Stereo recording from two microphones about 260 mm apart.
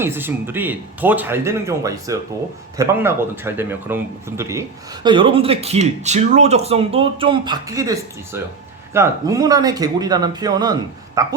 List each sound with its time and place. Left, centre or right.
0.0 s a man's voice: centre